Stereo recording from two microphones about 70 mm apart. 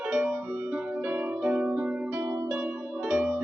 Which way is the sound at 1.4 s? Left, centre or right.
Centre.